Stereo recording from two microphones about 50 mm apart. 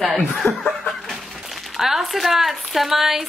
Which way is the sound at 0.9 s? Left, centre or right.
Centre.